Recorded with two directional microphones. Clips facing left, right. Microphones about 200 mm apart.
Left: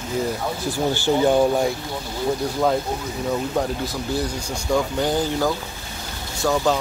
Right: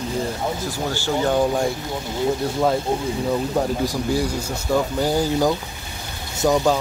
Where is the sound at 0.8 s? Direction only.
15° left (ahead or behind).